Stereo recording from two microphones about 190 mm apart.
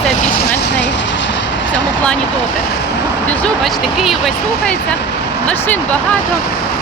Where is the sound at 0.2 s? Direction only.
55° left (ahead or behind); by 1.7 s 70° left (ahead or behind).